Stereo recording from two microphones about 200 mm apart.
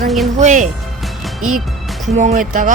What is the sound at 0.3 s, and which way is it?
Speech, 40° right (ahead or behind).